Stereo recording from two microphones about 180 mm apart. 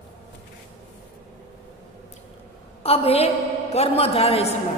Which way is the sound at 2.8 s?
35° left (ahead or behind).